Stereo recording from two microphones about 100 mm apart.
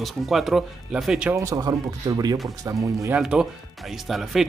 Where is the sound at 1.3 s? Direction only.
30° right (ahead or behind).